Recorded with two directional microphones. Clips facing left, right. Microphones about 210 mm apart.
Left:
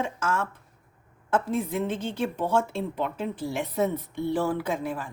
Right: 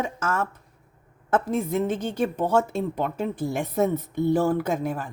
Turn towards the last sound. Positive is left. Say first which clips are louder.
# right 3 dB
turn(degrees=-45)  # may be behind; listen again after turning